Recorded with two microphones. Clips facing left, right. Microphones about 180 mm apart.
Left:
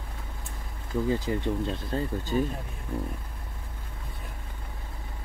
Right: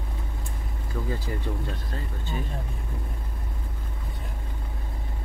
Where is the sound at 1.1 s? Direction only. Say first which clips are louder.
Left 5 dB; 20° left (ahead or behind).